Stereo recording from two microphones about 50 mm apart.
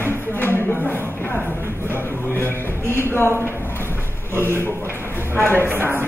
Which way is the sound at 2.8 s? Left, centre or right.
Left.